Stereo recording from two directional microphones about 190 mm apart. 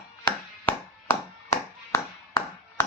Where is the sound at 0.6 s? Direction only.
15° left (ahead or behind).